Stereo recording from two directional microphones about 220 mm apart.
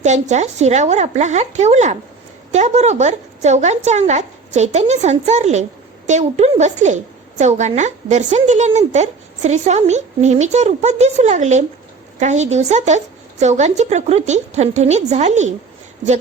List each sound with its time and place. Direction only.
0.0 s a woman's voice: 30° right (ahead or behind)